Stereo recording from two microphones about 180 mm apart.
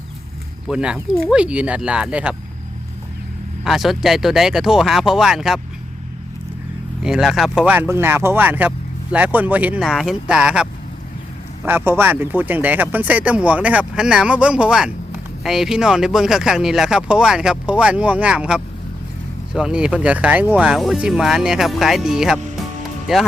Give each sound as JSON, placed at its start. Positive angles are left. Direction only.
{"t": 0.7, "sound": "speech", "side_deg": -5}
{"t": 3.6, "sound": "speech", "side_deg": 0}
{"t": 7.0, "sound": "speech", "side_deg": -5}